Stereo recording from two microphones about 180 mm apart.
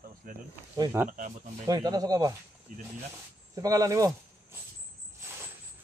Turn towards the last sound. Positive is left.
turn(degrees=-20)  # may be behind; listen again after turning